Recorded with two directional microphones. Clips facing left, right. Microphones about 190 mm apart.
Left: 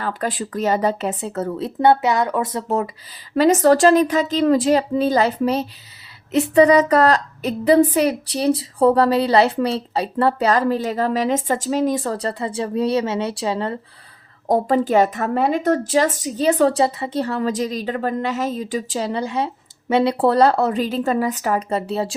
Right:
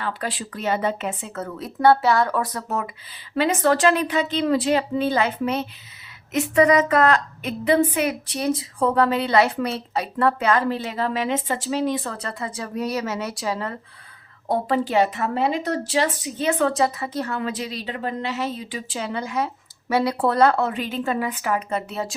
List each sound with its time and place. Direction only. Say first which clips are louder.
0.0 s a woman's voice: left 4 dB; 45° left (ahead or behind); by 13.7 s 30° left (ahead or behind)
14.4 s a woman's voice: left 5 dB; 45° left (ahead or behind)